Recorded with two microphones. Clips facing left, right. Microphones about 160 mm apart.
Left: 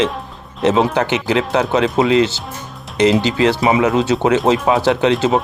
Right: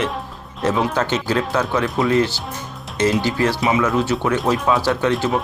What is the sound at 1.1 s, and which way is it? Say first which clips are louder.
Speech: left 3 dB; 15° left (ahead or behind).